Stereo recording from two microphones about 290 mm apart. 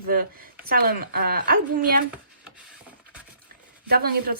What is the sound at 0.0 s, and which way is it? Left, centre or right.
A woman's voice, right.